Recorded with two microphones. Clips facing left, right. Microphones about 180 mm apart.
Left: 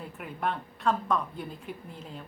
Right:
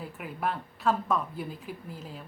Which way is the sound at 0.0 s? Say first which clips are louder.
Even; 5° right (ahead or behind).